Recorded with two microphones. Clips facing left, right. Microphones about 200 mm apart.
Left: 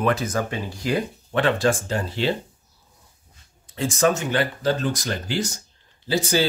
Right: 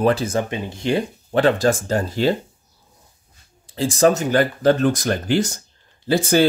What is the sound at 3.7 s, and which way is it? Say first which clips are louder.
Speech: right 4 dB; 35° right (ahead or behind).